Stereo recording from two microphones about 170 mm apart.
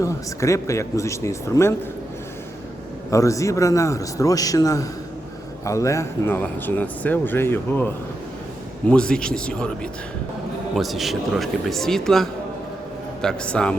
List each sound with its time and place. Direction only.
0.0 s speech: 15° left (ahead or behind)
3.1 s a man's voice: 20° left (ahead or behind)